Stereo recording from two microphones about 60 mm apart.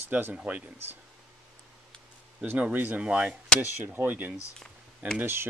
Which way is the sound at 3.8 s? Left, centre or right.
Right.